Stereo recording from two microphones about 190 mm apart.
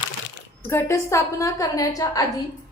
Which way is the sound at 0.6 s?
10° left (ahead or behind).